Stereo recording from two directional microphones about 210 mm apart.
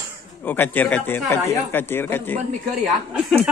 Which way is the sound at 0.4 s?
10° left (ahead or behind).